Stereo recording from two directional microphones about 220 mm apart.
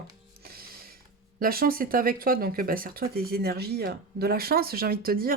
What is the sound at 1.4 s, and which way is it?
Speech, 40° right (ahead or behind).